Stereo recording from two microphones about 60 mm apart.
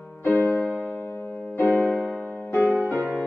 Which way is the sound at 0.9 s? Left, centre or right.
Left.